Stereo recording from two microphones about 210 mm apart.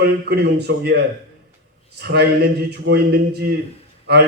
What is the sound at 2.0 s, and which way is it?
A man's voice, 50° right (ahead or behind).